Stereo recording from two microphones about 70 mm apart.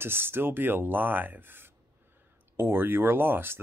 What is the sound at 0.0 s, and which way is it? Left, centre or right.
Speech, right.